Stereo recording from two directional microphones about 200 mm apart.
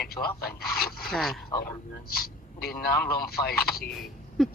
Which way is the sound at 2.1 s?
50° left (ahead or behind).